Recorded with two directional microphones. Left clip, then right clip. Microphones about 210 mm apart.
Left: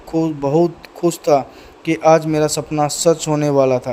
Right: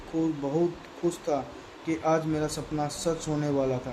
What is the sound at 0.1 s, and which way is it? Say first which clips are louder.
Speech: left 11 dB; 40° left (ahead or behind).